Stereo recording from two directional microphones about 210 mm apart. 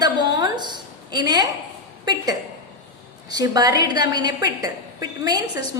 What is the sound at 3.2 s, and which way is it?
A woman's voice, 20° right (ahead or behind).